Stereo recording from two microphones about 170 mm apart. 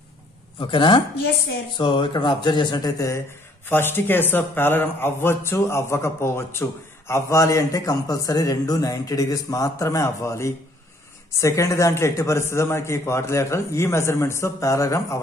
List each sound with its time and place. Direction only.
0.6 s a man's voice: 30° left (ahead or behind)